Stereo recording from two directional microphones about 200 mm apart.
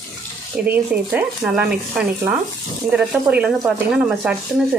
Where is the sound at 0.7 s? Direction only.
5° right (ahead or behind).